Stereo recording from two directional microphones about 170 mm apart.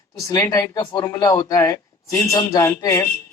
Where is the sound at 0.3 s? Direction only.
15° left (ahead or behind).